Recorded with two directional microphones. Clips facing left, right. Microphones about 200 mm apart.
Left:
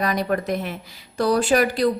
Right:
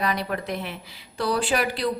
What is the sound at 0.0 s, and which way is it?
A woman's voice, 45° left (ahead or behind).